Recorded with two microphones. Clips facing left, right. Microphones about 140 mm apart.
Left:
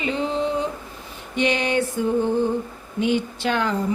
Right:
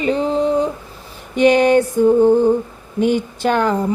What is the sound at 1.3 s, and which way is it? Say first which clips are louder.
Speech: right 10 dB; 45° right (ahead or behind).